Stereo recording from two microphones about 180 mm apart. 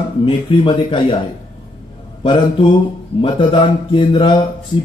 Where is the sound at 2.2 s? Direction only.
25° left (ahead or behind).